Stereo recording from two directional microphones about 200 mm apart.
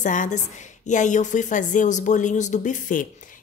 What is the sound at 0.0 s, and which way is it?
Speech, 40° left (ahead or behind).